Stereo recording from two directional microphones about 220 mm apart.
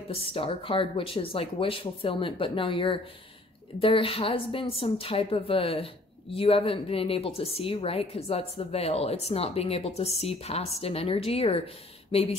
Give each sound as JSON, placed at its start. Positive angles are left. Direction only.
{"t": 0.1, "sound": "a woman's voice", "side_deg": 25}